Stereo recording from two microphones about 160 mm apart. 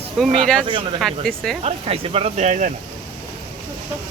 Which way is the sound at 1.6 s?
35° right (ahead or behind).